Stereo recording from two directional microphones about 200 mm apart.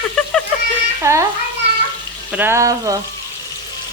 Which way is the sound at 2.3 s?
10° right (ahead or behind).